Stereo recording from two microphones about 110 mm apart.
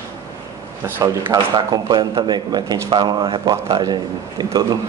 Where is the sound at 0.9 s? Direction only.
20° right (ahead or behind).